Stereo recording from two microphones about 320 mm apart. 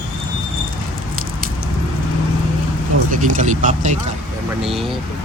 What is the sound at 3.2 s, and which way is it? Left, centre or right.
Speech, right.